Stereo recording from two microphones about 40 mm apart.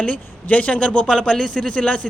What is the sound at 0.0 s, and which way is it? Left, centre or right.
A man's voice, left.